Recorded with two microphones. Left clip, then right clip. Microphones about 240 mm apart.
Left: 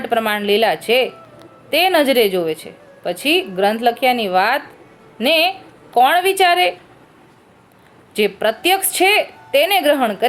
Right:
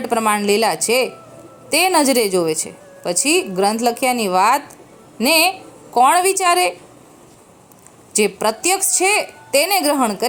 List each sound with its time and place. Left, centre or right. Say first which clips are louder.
0.0 s a woman's voice: right 1 dB; right
8.2 s a woman's voice: left 1 dB; right